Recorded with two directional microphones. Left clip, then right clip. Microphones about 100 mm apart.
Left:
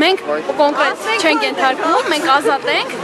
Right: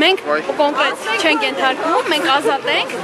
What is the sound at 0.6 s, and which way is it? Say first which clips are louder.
Speech: left 4 dB; 5° left (ahead or behind).